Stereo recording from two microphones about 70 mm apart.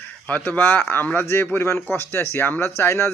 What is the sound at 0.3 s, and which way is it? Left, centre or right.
Speech, left.